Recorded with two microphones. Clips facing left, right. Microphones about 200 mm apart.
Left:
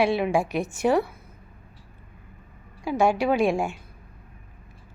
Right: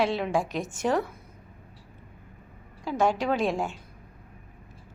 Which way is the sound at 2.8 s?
10° left (ahead or behind).